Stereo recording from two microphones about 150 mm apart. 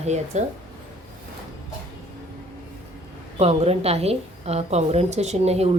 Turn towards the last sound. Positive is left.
turn(degrees=-45)  # may be behind; listen again after turning